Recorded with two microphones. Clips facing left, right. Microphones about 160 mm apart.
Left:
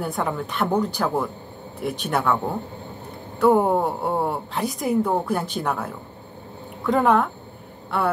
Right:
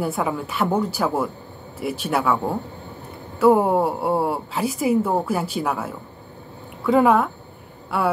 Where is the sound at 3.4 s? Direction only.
5° right (ahead or behind).